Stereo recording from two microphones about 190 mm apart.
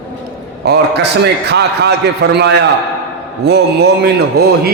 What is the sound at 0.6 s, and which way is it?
A man's voice, 60° right (ahead or behind).